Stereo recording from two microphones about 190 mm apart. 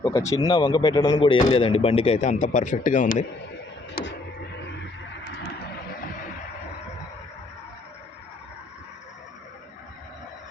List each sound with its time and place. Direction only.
0.0 s speech: 15° left (ahead or behind); by 3.2 s 40° left (ahead or behind)